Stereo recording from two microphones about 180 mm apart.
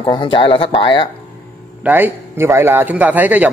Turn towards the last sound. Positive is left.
turn(degrees=-10)  # may be behind; listen again after turning